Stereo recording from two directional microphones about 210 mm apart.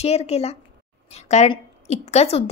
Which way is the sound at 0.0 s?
30° left (ahead or behind).